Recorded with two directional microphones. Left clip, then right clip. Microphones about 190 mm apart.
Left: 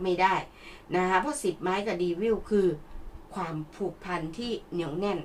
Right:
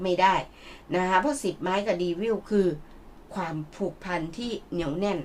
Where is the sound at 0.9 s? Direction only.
45° right (ahead or behind).